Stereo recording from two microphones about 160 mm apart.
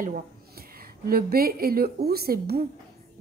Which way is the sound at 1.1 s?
75° right (ahead or behind).